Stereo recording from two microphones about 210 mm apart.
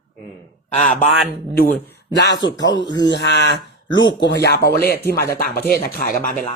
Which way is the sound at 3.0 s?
50° left (ahead or behind).